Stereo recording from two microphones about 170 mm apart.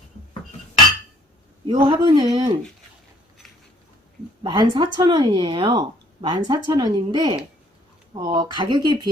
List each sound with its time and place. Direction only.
1.6 s speech: 30° right (ahead or behind)
4.4 s speech: 25° right (ahead or behind)